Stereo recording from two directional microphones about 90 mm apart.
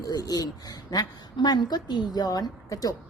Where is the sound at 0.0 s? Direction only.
45° left (ahead or behind).